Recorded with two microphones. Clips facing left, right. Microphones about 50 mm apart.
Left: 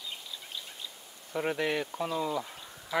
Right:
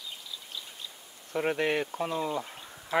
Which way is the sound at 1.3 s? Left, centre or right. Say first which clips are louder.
Right 2 dB; centre.